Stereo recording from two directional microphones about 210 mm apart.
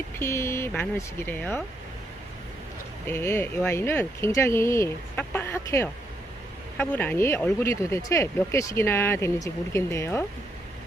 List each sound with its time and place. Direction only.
0.2 s speech: 10° left (ahead or behind)
3.1 s speech: 10° left (ahead or behind)